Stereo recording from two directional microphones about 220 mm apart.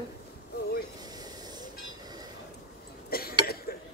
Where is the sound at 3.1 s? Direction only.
45° left (ahead or behind).